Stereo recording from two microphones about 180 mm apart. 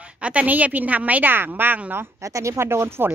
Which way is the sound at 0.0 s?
5° right (ahead or behind).